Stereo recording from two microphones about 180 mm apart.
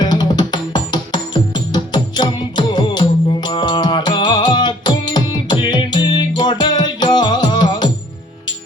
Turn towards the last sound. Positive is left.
turn(degrees=25)  # may be behind; listen again after turning